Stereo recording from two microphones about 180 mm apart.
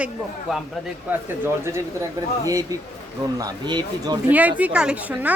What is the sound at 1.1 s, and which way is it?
Speech, 10° right (ahead or behind).